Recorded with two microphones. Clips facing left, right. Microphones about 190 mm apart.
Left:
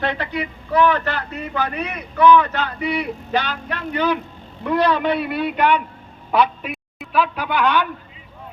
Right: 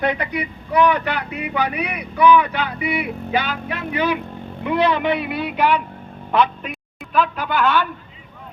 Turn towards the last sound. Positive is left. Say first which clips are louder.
# even
turn(degrees=15)  # may be behind; listen again after turning